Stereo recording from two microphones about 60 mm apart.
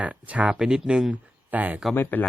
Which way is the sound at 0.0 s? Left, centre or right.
Right.